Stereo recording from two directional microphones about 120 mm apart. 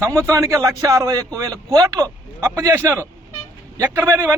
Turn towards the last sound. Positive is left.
turn(degrees=-15)  # may be behind; listen again after turning